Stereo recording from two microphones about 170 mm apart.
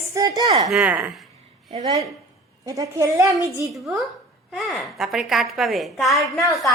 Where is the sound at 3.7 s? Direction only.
Centre (ahead or behind).